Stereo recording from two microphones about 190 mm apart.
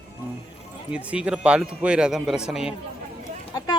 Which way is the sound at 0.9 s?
5° right (ahead or behind).